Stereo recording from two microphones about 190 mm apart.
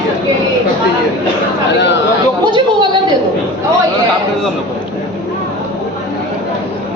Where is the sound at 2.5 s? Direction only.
25° right (ahead or behind).